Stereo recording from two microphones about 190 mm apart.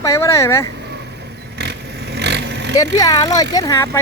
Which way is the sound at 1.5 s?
60° right (ahead or behind).